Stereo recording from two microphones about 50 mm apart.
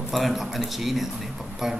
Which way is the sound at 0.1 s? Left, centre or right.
Centre.